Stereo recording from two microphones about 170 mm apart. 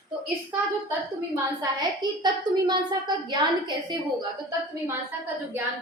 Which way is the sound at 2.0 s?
25° right (ahead or behind).